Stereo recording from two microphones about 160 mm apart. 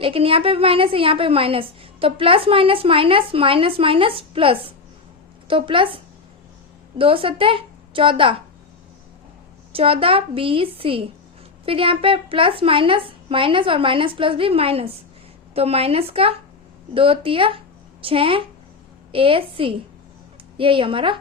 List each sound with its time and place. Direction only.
0.0 s a woman's voice: 35° right (ahead or behind)
7.0 s a woman's voice: 35° right (ahead or behind)
9.7 s a woman's voice: 35° right (ahead or behind)